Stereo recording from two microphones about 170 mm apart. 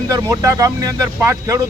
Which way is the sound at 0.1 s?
20° right (ahead or behind).